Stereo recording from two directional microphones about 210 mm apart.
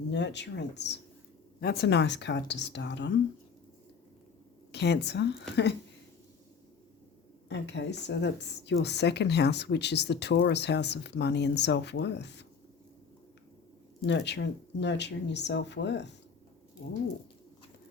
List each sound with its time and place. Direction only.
0.1 s a woman's voice: 55° left (ahead or behind)
4.7 s speech: 55° left (ahead or behind)
7.5 s a woman's voice: 55° left (ahead or behind)
14.1 s a woman's voice: 55° left (ahead or behind)